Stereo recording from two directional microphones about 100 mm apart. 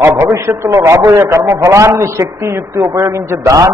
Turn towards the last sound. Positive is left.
turn(degrees=-30)  # may be behind; listen again after turning